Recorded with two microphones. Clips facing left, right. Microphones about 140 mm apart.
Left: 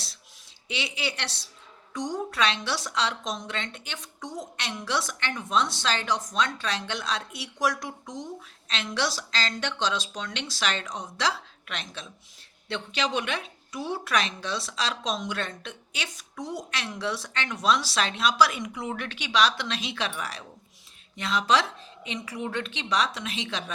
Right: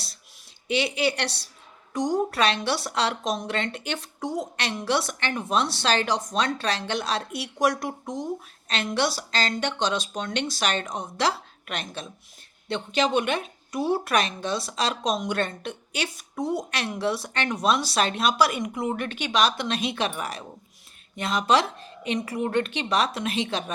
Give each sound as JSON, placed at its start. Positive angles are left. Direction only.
{"t": 0.7, "sound": "a woman's voice", "side_deg": -60}
{"t": 1.9, "sound": "a woman's voice", "side_deg": -45}
{"t": 2.3, "sound": "a woman's voice", "side_deg": -60}
{"t": 12.6, "sound": "a woman's voice", "side_deg": -45}